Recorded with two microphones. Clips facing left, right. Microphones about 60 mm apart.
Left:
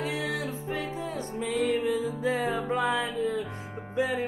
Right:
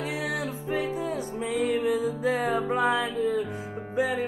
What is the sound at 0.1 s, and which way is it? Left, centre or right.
Music, centre.